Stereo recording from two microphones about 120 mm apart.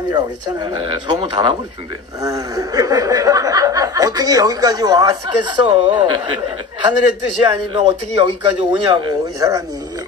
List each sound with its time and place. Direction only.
0.1 s speech: 40° right (ahead or behind)
2.2 s speech: 30° right (ahead or behind)